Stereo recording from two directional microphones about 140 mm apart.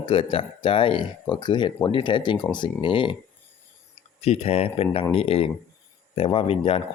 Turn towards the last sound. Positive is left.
turn(degrees=45)  # may be behind; listen again after turning